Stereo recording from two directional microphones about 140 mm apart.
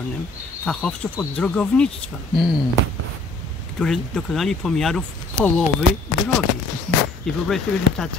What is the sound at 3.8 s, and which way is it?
Speech, 5° left (ahead or behind).